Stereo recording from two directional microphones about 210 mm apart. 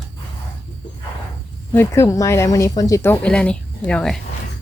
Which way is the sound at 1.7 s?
15° left (ahead or behind).